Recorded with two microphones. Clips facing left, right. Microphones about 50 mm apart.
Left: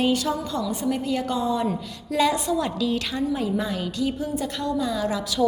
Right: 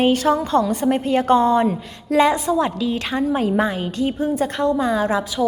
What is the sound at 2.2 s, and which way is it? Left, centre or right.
Speech, right.